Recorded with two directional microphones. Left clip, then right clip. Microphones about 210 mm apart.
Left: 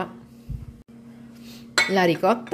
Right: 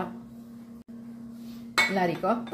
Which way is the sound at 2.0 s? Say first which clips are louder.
Left 7 dB; 50° left (ahead or behind).